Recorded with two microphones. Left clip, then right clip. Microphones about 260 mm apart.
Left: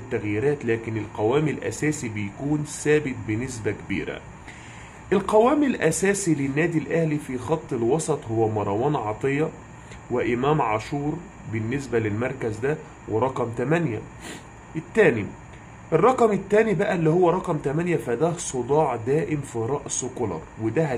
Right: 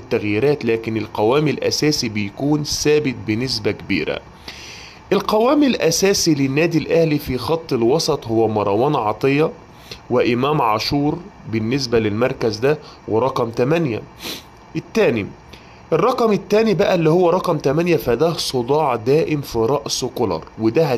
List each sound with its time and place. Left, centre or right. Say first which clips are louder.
0.1 s a man's voice: right 7 dB; right